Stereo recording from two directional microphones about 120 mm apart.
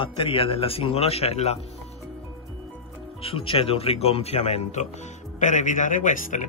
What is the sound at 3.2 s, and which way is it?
Speech, 50° left (ahead or behind).